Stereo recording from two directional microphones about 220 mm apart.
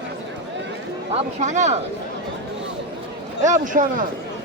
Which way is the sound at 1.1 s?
30° right (ahead or behind).